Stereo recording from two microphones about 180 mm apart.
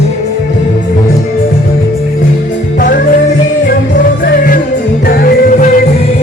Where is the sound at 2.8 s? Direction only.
55° left (ahead or behind).